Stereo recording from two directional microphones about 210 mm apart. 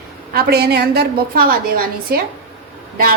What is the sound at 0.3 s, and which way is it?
A woman's voice, 50° right (ahead or behind).